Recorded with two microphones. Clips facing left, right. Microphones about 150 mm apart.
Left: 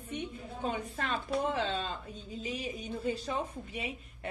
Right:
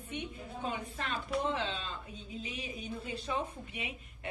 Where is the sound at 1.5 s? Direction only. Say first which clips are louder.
Left 3 dB; 40° left (ahead or behind).